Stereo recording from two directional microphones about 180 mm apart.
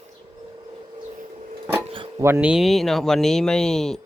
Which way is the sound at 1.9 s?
30° right (ahead or behind).